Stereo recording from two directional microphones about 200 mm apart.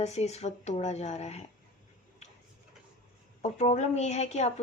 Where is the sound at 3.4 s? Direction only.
35° left (ahead or behind).